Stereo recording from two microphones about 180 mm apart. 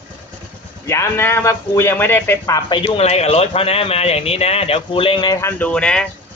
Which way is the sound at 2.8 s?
35° left (ahead or behind).